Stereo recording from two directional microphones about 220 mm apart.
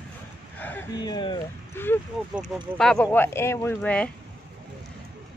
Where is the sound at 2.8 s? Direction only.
5° left (ahead or behind).